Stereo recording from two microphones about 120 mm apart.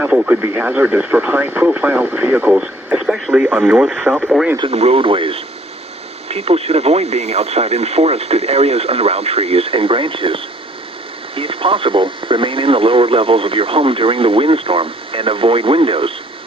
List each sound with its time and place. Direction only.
0.0 s speech: 10° right (ahead or behind)
4.7 s speech: 55° right (ahead or behind)